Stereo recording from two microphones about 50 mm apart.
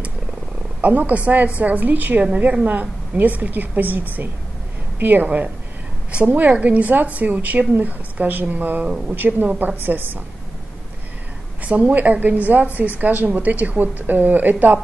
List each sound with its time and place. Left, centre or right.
0.7 s a woman's voice: right
11.6 s a woman's voice: right